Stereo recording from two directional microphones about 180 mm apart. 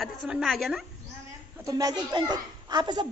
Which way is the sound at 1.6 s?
20° right (ahead or behind).